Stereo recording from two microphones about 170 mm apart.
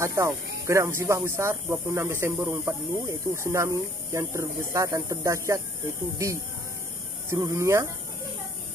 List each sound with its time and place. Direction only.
0.0 s speech: 15° right (ahead or behind)